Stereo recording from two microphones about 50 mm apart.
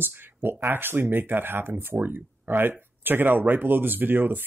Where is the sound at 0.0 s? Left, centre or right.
Right.